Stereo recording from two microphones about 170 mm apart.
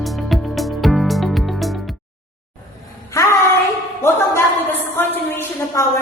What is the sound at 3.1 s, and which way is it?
Child singing, 20° left (ahead or behind).